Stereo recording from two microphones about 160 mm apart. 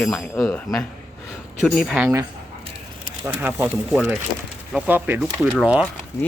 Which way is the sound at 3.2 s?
10° right (ahead or behind).